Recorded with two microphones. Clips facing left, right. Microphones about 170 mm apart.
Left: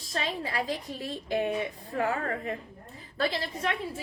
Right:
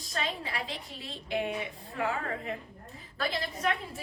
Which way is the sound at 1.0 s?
45° left (ahead or behind).